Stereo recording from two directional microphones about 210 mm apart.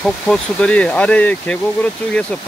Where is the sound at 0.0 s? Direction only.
5° left (ahead or behind).